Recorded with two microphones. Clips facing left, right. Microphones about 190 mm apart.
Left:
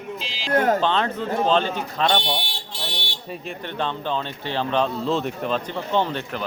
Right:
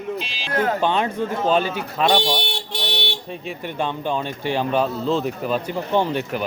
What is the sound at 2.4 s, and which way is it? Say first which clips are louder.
Car alarm: right 6 dB; 70° right (ahead or behind).